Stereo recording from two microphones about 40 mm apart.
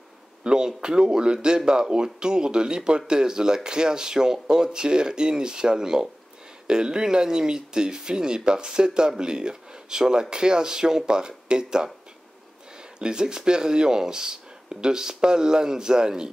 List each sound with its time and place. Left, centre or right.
0.4 s speech: right
13.0 s speech: centre